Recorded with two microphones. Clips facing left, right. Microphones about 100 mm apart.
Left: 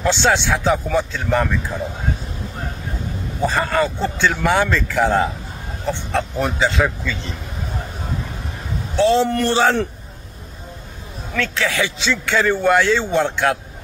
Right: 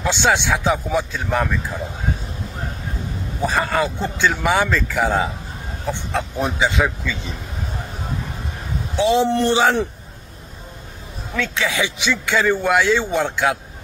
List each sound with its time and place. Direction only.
0.0 s a man's voice: 15° right (ahead or behind)
3.4 s a man's voice: 5° right (ahead or behind)
8.9 s a man's voice: 15° right (ahead or behind)
11.3 s a man's voice: 15° right (ahead or behind)